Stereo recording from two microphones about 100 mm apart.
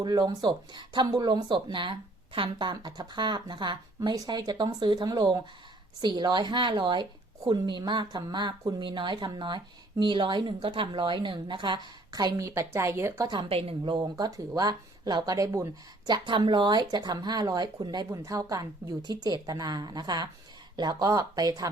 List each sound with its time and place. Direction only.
0.0 s speech: 45° right (ahead or behind)
12.5 s a woman's voice: 30° right (ahead or behind)
13.5 s speech: 75° right (ahead or behind)
14.0 s speech: 40° right (ahead or behind)
16.0 s speech: 50° right (ahead or behind)